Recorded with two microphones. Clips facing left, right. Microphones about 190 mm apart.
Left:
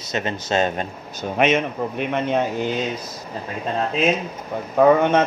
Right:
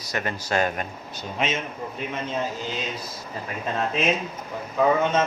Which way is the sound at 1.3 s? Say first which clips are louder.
Left 9 dB; 65° left (ahead or behind).